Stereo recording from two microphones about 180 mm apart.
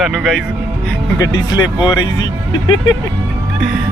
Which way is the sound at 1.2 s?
20° left (ahead or behind).